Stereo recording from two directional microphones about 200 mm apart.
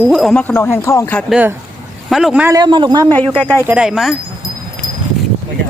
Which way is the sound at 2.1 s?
5° right (ahead or behind).